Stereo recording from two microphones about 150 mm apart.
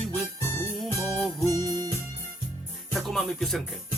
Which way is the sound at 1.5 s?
25° right (ahead or behind).